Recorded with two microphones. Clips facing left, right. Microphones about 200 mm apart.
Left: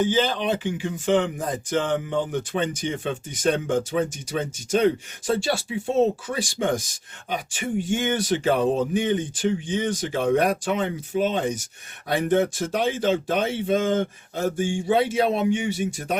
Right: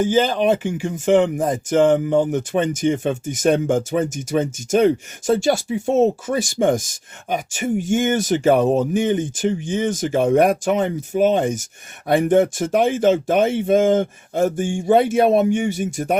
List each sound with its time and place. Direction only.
0.0 s speech: 50° right (ahead or behind)